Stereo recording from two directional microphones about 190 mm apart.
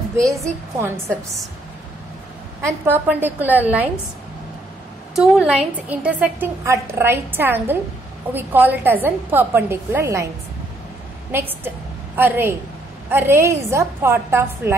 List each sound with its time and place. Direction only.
0.2 s a woman's voice: 15° right (ahead or behind)
2.6 s a woman's voice: 15° right (ahead or behind)
5.1 s a woman's voice: 5° right (ahead or behind)
11.3 s a woman's voice: 10° right (ahead or behind)